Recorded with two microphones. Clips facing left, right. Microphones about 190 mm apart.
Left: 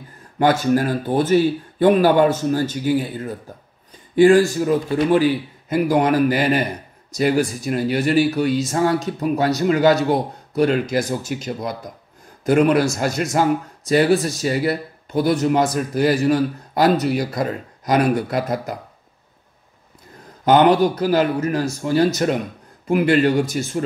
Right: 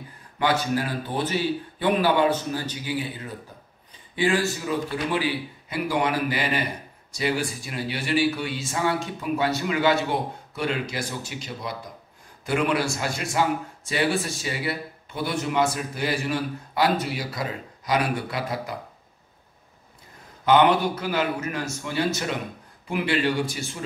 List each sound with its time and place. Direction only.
0.4 s a man's voice: 45° left (ahead or behind)
20.4 s a man's voice: 40° left (ahead or behind)